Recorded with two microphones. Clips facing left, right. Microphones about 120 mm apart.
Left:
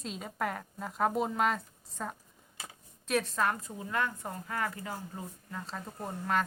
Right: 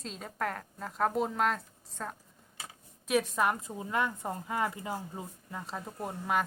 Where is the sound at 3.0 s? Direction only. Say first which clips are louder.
Right 2 dB; 10° right (ahead or behind).